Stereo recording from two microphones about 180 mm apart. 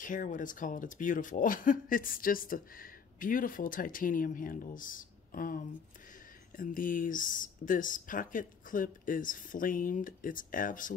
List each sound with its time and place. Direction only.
0.0 s speech: 45° left (ahead or behind)